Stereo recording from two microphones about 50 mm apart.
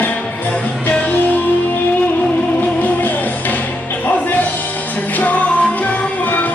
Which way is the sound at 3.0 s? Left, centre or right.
Left.